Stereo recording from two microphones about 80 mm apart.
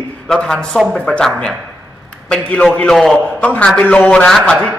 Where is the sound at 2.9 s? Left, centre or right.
Centre.